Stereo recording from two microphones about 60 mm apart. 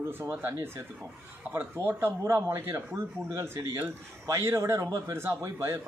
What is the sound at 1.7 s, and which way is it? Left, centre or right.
Speech, right.